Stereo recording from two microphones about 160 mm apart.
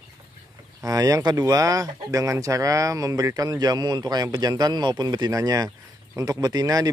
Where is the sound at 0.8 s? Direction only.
20° right (ahead or behind).